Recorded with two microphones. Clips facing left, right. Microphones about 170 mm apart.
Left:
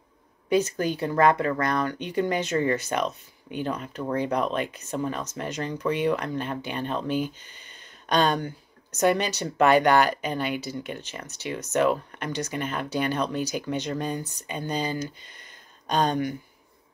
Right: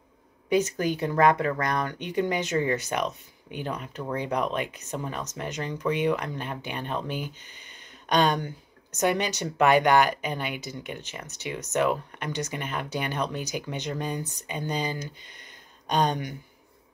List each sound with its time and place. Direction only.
0.5 s speech: 15° right (ahead or behind)